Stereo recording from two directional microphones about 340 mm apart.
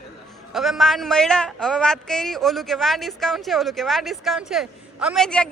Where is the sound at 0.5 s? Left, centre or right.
Centre.